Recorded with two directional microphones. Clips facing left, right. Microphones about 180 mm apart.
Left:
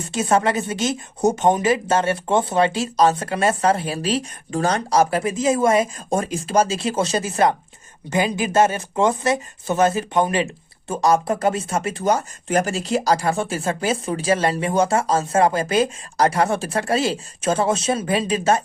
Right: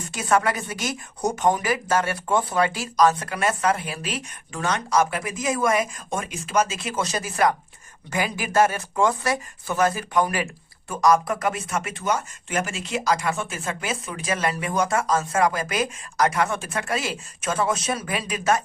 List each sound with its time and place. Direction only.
0.1 s speech: 25° left (ahead or behind)